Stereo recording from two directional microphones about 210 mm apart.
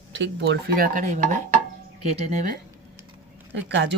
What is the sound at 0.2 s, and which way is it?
Speech, 55° right (ahead or behind).